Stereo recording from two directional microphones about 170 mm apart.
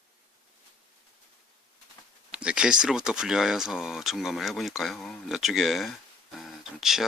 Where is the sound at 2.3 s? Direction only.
5° right (ahead or behind).